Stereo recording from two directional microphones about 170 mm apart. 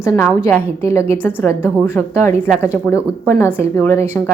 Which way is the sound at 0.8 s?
15° left (ahead or behind).